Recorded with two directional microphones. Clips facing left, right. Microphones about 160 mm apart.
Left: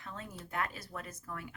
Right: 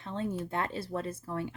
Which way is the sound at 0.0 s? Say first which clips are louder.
Right 12 dB; 30° right (ahead or behind).